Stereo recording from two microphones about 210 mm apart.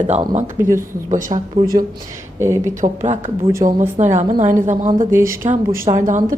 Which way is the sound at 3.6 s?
20° right (ahead or behind).